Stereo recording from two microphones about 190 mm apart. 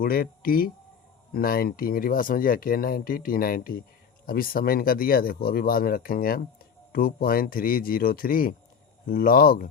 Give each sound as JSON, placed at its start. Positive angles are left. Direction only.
{"t": 0.0, "sound": "speech", "side_deg": 50}